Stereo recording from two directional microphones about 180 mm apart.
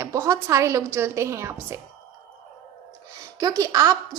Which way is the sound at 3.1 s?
20° right (ahead or behind).